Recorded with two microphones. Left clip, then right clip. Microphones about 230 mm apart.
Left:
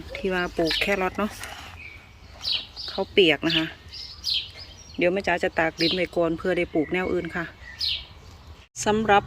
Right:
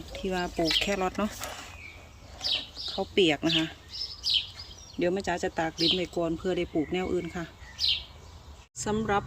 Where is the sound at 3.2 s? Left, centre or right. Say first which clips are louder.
Left 4 dB; centre.